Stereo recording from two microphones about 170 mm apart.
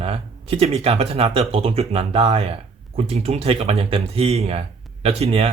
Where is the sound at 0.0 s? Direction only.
35° right (ahead or behind).